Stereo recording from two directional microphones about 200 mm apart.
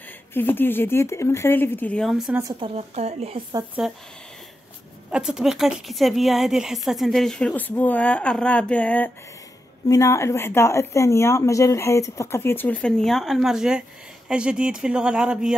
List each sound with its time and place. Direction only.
0.3 s speech: 10° left (ahead or behind)
2.4 s speech: 30° right (ahead or behind)
3.8 s a woman's voice: 5° right (ahead or behind)
5.1 s a woman's voice: centre (ahead or behind)